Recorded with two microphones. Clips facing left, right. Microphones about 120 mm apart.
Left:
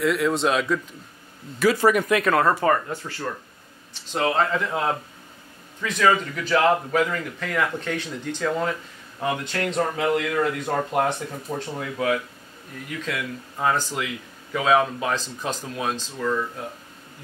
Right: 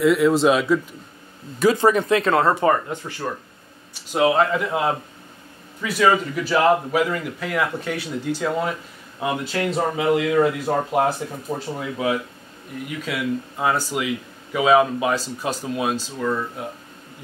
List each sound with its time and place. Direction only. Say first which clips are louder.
0.0 s speech: right 5 dB; centre (ahead or behind)
1.6 s speech: right 2 dB; 25° right (ahead or behind)